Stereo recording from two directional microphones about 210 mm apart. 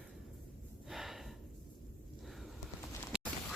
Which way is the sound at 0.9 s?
Centre (ahead or behind).